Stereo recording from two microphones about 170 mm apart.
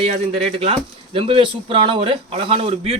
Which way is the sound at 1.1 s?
30° right (ahead or behind).